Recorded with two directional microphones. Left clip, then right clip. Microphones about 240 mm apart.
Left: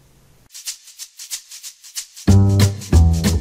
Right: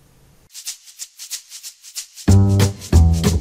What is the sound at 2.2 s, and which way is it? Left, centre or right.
Music, centre.